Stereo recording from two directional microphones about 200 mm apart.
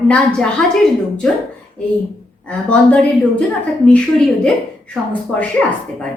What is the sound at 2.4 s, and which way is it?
A woman's voice, 5° left (ahead or behind).